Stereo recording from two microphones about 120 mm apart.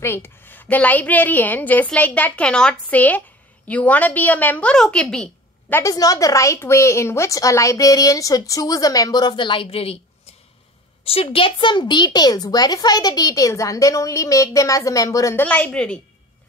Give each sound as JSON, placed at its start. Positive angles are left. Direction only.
{"t": 0.0, "sound": "a woman's voice", "side_deg": 20}
{"t": 5.1, "sound": "a sound", "side_deg": 5}
{"t": 5.8, "sound": "speech", "side_deg": 30}
{"t": 11.2, "sound": "a child's voice", "side_deg": 45}
{"t": 15.4, "sound": "a woman's voice", "side_deg": 10}